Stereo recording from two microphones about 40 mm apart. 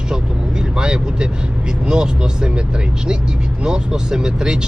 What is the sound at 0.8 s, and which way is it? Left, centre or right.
Vehicle, right.